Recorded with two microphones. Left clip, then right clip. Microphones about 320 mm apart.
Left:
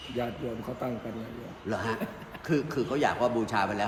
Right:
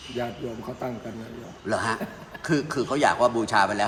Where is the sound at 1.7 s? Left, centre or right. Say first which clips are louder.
Right 6 dB; right.